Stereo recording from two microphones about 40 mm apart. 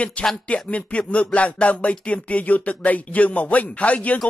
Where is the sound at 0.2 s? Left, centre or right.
Left.